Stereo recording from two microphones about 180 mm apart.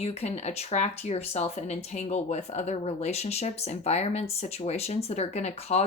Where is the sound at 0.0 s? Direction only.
35° left (ahead or behind).